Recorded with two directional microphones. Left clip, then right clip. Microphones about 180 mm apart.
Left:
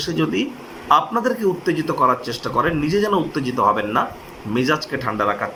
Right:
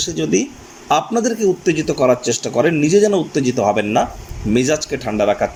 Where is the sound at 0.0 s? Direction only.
30° right (ahead or behind).